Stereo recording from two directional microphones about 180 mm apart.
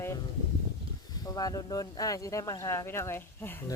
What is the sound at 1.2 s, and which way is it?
Speech, 20° left (ahead or behind).